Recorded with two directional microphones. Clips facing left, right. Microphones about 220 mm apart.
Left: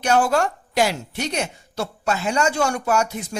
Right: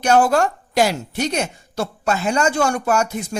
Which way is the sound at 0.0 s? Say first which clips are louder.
Right 3 dB; 45° right (ahead or behind).